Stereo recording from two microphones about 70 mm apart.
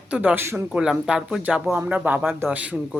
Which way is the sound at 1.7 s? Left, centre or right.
Right.